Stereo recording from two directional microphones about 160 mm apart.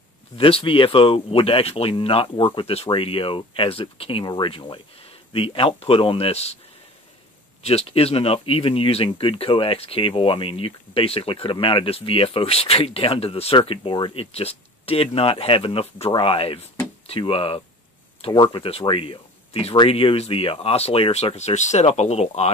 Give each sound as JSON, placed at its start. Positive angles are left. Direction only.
{"t": 0.4, "sound": "speech", "side_deg": 35}
{"t": 7.6, "sound": "speech", "side_deg": 40}